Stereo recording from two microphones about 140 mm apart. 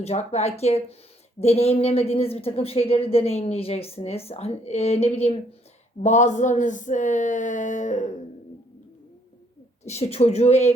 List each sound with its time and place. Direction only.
0.0 s speech: 50° left (ahead or behind)
6.0 s a sound: 60° left (ahead or behind)
9.8 s speech: 50° left (ahead or behind)